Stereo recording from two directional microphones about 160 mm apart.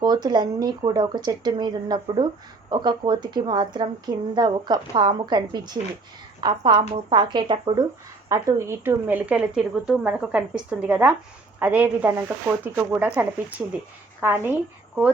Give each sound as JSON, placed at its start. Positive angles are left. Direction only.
{"t": 0.0, "sound": "a woman's voice", "side_deg": -25}